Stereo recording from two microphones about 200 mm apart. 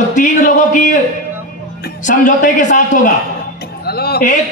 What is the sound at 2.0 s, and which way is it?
A man's voice, 40° left (ahead or behind).